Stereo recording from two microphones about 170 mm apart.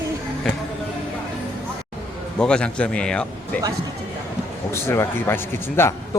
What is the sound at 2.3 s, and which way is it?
A man's voice, 5° left (ahead or behind).